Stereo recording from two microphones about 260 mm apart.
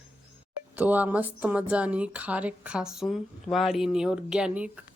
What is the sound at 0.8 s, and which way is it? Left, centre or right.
Speech, centre.